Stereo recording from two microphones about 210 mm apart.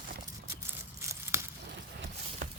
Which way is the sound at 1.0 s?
15° right (ahead or behind).